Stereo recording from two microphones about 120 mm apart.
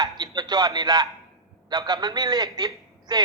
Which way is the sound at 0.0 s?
35° right (ahead or behind).